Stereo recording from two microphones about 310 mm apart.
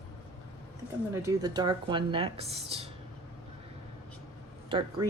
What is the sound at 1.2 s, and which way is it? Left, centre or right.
A woman's voice, centre.